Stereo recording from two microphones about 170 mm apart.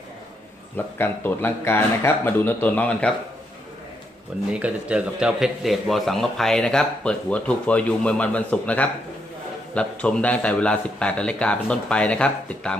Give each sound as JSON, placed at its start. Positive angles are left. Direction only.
{"t": 0.9, "sound": "a man's voice", "side_deg": 10}
{"t": 4.5, "sound": "a man's voice", "side_deg": -5}